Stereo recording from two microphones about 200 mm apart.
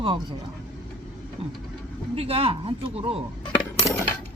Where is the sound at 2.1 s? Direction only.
30° right (ahead or behind).